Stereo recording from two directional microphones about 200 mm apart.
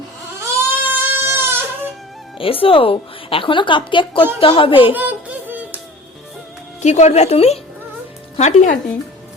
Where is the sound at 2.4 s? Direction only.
25° left (ahead or behind).